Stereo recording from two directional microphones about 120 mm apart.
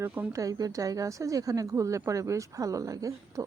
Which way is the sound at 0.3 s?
30° right (ahead or behind).